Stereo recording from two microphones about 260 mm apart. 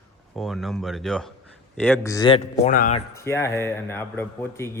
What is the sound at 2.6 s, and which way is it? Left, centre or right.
Speech, left.